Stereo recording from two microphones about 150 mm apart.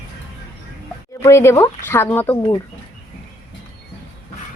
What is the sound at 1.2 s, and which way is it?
Speech, 20° left (ahead or behind).